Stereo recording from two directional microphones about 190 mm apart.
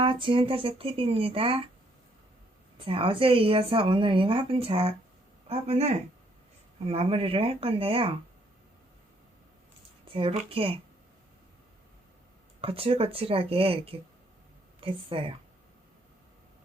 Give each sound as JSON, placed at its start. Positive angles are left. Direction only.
{"t": 0.0, "sound": "a woman's voice", "side_deg": -25}
{"t": 2.8, "sound": "a woman's voice", "side_deg": -30}
{"t": 10.1, "sound": "a woman's voice", "side_deg": -30}
{"t": 12.6, "sound": "a woman's voice", "side_deg": -30}